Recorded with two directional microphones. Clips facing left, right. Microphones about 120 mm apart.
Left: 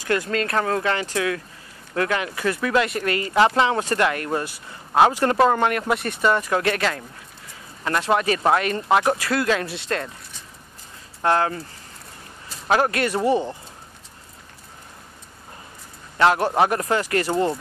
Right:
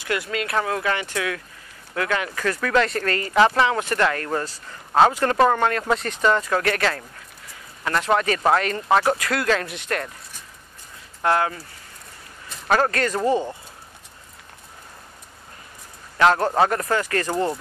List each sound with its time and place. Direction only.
0.0 s speech: 40° left (ahead or behind); by 10.1 s 25° left (ahead or behind)
11.2 s speech: 30° left (ahead or behind)
12.6 s speech: 15° left (ahead or behind)
16.3 s speech: 20° left (ahead or behind)